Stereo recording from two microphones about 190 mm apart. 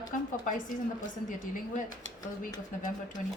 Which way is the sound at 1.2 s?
45° left (ahead or behind).